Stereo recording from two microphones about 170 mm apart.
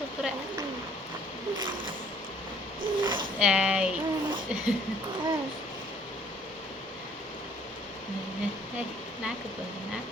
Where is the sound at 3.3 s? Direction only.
5° right (ahead or behind).